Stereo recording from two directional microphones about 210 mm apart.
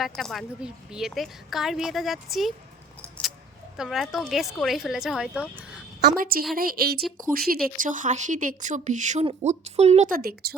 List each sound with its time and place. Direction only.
0.0 s speech: centre (ahead or behind)
3.0 s a sound: centre (ahead or behind)
3.8 s speech: centre (ahead or behind)
6.0 s a woman's voice: 45° right (ahead or behind)
10.2 s a woman's voice: 45° right (ahead or behind)